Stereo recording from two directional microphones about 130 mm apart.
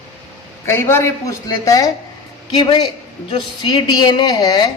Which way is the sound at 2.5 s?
35° left (ahead or behind).